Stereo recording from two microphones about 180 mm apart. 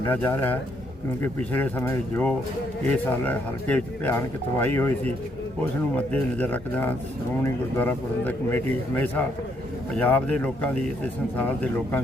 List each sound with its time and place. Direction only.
0.0 s speech: 10° left (ahead or behind)